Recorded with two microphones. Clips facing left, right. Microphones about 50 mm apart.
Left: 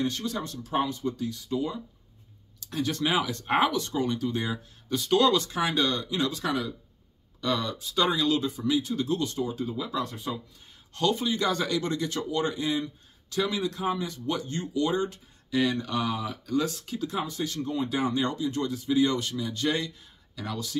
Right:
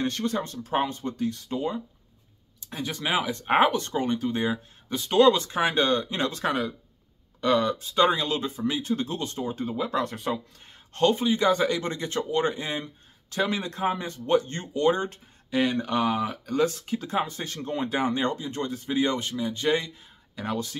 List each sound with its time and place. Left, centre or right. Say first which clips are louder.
0.0 s speech: right 2 dB; right
2.6 s speech: left 3 dB; right
10.9 s speech: right 4 dB; right